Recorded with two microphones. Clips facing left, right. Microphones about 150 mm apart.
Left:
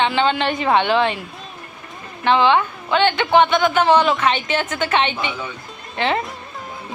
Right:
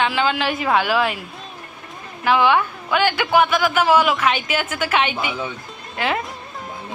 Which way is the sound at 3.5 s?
5° right (ahead or behind).